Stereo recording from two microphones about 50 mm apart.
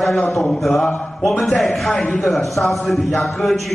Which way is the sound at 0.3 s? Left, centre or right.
Centre.